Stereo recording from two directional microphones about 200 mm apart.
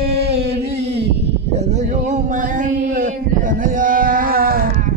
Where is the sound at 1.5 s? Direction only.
35° right (ahead or behind).